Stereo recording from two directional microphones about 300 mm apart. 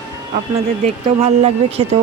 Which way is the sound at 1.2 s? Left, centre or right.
Right.